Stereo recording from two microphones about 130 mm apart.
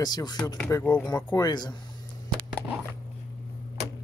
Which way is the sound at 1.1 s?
30° left (ahead or behind).